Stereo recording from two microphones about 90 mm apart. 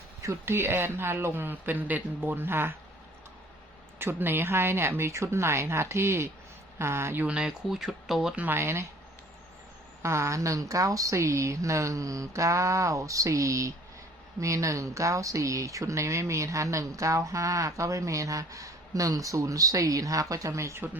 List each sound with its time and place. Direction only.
0.2 s speech: 30° right (ahead or behind)
3.9 s speech: 25° right (ahead or behind)
7.3 s speech: 10° right (ahead or behind)
8.4 s speech: 25° right (ahead or behind)
10.0 s speech: 30° right (ahead or behind)